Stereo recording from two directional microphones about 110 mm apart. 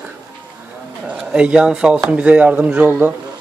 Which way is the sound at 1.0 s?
10° right (ahead or behind).